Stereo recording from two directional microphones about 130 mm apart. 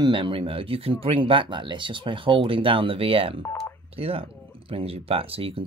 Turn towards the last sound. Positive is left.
turn(degrees=-45)  # may be behind; listen again after turning